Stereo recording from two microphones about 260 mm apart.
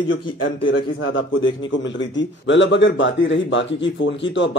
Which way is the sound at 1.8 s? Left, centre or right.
Left.